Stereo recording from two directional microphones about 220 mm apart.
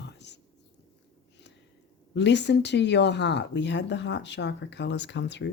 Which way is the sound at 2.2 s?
50° left (ahead or behind).